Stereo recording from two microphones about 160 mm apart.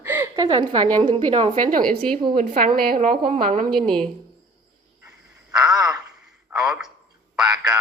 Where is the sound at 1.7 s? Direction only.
60° right (ahead or behind).